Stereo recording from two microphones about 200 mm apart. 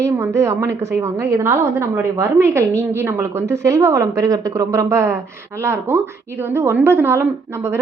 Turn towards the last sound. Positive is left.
turn(degrees=-10)  # may be behind; listen again after turning